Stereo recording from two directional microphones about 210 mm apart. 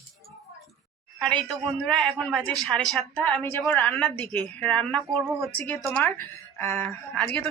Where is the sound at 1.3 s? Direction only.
20° right (ahead or behind).